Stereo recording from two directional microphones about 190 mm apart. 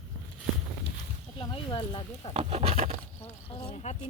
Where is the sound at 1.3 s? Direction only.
25° left (ahead or behind).